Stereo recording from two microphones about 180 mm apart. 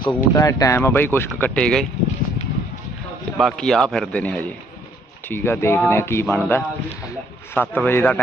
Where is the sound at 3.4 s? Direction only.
5° left (ahead or behind).